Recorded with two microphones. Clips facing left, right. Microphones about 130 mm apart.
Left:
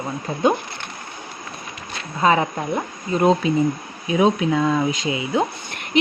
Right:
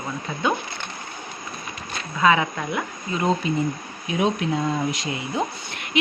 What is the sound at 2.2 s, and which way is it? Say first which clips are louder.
Speech: left 1 dB; 35° left (ahead or behind).